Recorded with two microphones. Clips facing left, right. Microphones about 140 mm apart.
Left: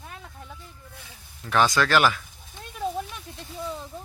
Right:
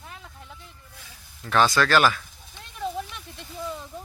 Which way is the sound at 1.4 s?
15° left (ahead or behind).